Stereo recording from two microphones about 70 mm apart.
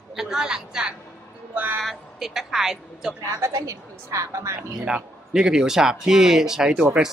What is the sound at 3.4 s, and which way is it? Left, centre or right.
A woman's voice, right.